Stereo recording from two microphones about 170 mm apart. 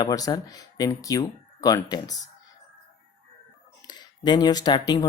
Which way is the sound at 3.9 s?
25° left (ahead or behind).